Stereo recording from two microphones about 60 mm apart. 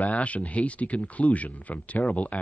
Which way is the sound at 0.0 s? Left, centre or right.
Left.